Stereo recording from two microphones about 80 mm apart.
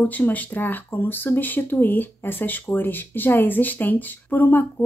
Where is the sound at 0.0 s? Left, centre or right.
Centre.